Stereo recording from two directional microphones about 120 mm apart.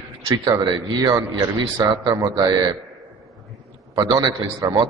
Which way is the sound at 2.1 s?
30° right (ahead or behind).